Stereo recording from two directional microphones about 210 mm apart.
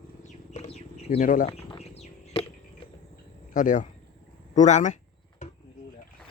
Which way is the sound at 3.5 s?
40° left (ahead or behind).